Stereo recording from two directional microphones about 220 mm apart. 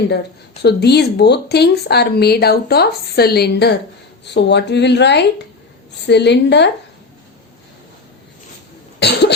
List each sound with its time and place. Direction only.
0.6 s speech: 50° left (ahead or behind)
9.0 s cough: 50° left (ahead or behind)